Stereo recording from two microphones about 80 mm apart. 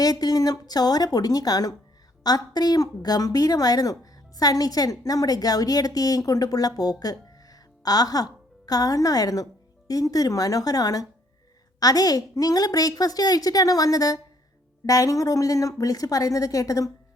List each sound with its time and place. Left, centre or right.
0.0 s a woman's voice: left